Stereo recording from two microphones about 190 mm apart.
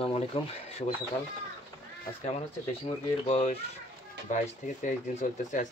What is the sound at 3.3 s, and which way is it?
Speech, 35° left (ahead or behind).